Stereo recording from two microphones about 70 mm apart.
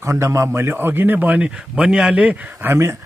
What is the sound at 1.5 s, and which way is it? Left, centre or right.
Speech, centre.